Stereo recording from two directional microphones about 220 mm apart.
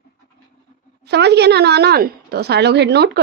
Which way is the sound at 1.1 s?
50° right (ahead or behind).